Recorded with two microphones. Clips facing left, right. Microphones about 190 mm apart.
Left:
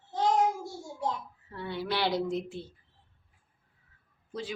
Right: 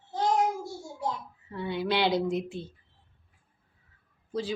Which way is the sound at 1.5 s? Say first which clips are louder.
Right 4 dB; 15° right (ahead or behind).